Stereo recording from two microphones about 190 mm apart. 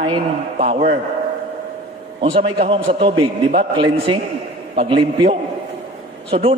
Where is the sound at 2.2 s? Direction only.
30° right (ahead or behind).